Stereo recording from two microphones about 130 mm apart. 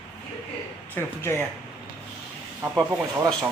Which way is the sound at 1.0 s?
20° left (ahead or behind).